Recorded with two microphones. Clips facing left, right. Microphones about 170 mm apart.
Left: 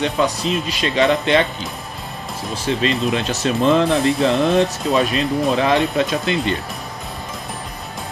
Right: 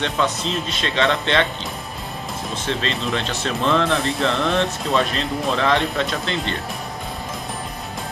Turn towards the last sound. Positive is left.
turn(degrees=15)  # may be behind; listen again after turning